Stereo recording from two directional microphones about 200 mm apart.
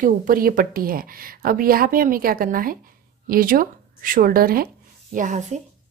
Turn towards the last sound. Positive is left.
turn(degrees=-40)  # may be behind; listen again after turning